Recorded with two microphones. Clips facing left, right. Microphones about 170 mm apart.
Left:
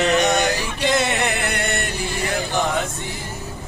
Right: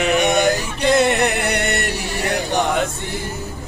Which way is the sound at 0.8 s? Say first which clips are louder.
Right 5 dB; 50° right (ahead or behind).